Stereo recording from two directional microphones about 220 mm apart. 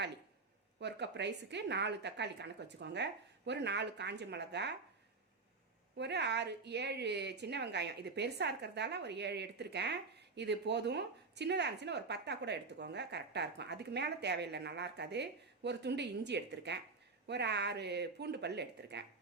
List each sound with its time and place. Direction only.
0.8 s a woman's voice: 50° right (ahead or behind)
6.0 s a woman's voice: 50° right (ahead or behind)